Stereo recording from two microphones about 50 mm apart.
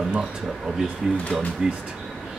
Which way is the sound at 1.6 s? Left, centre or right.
Centre.